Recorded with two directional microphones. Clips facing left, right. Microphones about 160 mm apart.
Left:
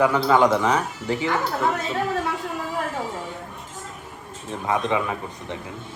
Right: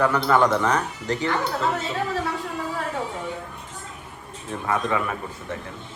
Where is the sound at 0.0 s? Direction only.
15° left (ahead or behind).